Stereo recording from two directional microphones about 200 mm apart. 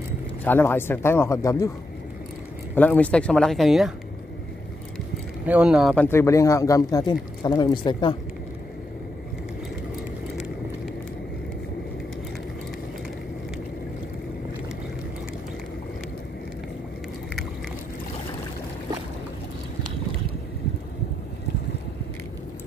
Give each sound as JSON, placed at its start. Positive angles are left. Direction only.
{"t": 0.4, "sound": "speech", "side_deg": 10}
{"t": 2.7, "sound": "speech", "side_deg": 10}
{"t": 5.4, "sound": "speech", "side_deg": -5}
{"t": 6.0, "sound": "speech", "side_deg": 15}